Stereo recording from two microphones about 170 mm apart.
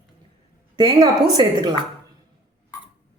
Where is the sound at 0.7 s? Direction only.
25° right (ahead or behind).